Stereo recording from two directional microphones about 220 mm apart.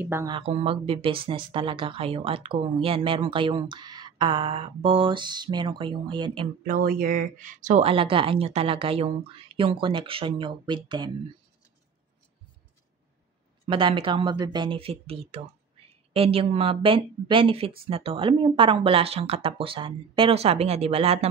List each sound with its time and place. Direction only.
0.0 s speech: 10° right (ahead or behind)
0.4 s speech: 25° right (ahead or behind)
6.6 s speech: 40° right (ahead or behind); by 11.1 s 20° right (ahead or behind)
13.7 s speech: 25° right (ahead or behind)